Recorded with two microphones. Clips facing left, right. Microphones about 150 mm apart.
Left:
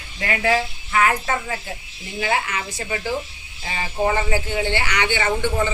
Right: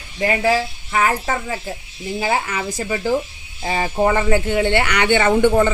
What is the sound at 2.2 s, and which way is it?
Speech, 35° right (ahead or behind).